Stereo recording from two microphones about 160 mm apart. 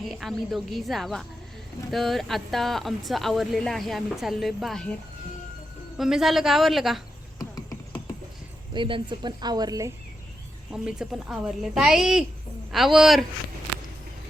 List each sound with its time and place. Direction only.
0.0 s speech: centre (ahead or behind)
6.0 s speech: centre (ahead or behind)
8.7 s a woman's voice: 30° right (ahead or behind)
10.7 s speech: 5° right (ahead or behind)